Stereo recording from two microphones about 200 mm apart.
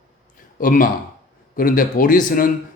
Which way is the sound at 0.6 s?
45° left (ahead or behind).